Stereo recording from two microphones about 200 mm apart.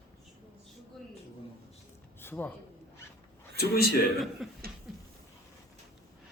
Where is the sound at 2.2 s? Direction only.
10° left (ahead or behind).